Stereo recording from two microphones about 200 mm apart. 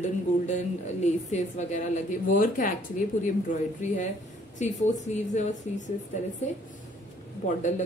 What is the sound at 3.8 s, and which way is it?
Speech, 35° left (ahead or behind).